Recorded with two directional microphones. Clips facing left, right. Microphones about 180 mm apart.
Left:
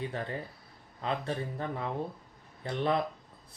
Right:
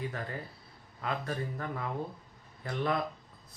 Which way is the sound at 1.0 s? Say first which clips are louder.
Left 2 dB; 25° left (ahead or behind).